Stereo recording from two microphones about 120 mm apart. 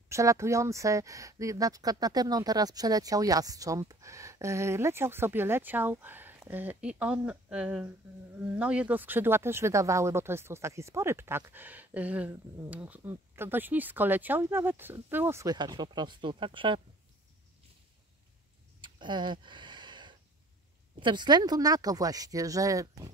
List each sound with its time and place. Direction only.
0.1 s speech: 25° right (ahead or behind)
15.4 s speech: 35° right (ahead or behind)
18.8 s a sound: 40° right (ahead or behind)
21.0 s speech: 40° right (ahead or behind)